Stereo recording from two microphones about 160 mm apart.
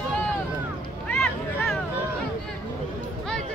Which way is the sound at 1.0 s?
5° left (ahead or behind).